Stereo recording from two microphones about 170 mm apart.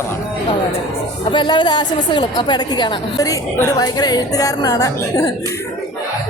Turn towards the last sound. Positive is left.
turn(degrees=20)  # may be behind; listen again after turning